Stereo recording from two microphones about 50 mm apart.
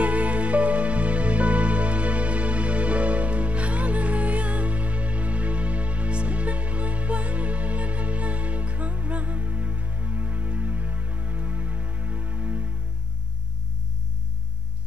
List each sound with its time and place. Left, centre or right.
0.0 s music: right